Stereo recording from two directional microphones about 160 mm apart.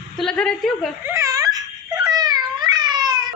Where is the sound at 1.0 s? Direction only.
20° right (ahead or behind).